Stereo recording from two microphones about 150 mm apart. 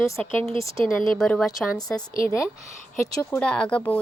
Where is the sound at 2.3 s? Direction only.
20° left (ahead or behind).